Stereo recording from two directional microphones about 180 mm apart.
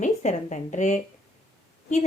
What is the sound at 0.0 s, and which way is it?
A woman's voice, 40° left (ahead or behind).